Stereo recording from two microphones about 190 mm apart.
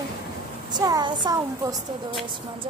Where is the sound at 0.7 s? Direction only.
20° right (ahead or behind).